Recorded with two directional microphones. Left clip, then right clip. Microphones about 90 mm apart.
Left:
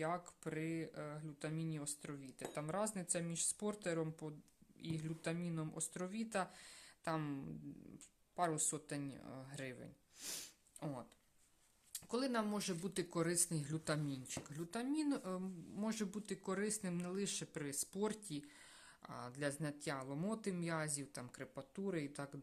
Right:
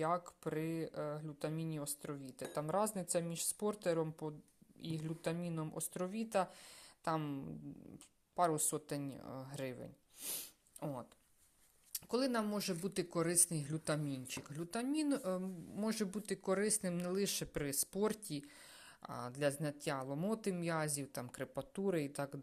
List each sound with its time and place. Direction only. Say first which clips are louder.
0.0 s a woman's voice: right 5 dB; 35° right (ahead or behind)
7.2 s speech: right 2 dB; 10° right (ahead or behind)
7.9 s speech: right 5 dB; 30° right (ahead or behind)
10.2 s a sound: right 1 dB; 5° right (ahead or behind)
10.8 s speech: right 3 dB; 10° right (ahead or behind)
11.9 s a woman's voice: right 3 dB; 30° right (ahead or behind); by 14.0 s 15° right (ahead or behind)
14.1 s speech: right 3 dB; 35° right (ahead or behind); by 22.4 s 50° right (ahead or behind)